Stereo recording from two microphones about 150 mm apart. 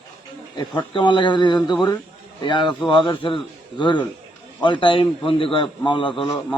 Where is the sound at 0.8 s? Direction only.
30° left (ahead or behind).